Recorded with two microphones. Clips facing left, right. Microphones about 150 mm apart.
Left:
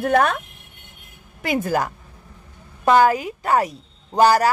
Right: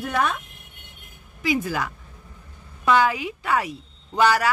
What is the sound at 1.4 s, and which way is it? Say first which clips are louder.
A woman's voice: left 3 dB; 50° left (ahead or behind).